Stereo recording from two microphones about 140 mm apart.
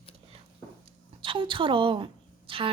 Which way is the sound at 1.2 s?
40° right (ahead or behind).